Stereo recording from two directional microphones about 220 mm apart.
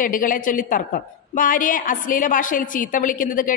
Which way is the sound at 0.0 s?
40° left (ahead or behind).